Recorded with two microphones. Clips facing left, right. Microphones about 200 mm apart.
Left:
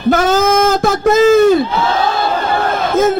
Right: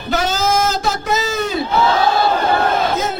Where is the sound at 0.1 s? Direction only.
50° left (ahead or behind).